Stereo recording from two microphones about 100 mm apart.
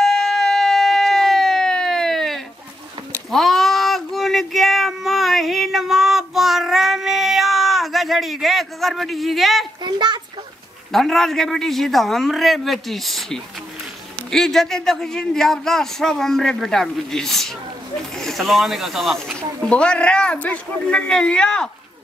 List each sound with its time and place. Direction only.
0.0 s a sound: 5° left (ahead or behind)
9.8 s a child's voice: 50° right (ahead or behind)
10.9 s a man's voice: centre (ahead or behind)